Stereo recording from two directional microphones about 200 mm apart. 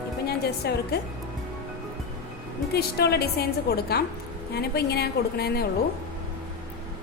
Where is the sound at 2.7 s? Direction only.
55° left (ahead or behind).